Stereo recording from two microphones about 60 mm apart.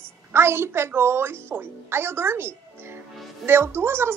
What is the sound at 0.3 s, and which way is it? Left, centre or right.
A woman's voice, right.